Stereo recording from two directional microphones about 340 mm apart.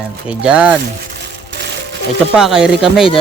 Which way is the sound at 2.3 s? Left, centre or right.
Centre.